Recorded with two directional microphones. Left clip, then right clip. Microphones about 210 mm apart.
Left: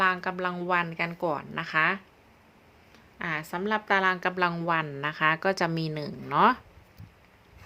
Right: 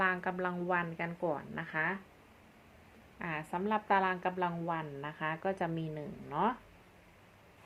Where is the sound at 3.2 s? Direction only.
25° left (ahead or behind); by 6.6 s 40° left (ahead or behind).